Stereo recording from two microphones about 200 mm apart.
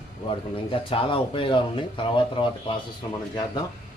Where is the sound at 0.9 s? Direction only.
25° left (ahead or behind).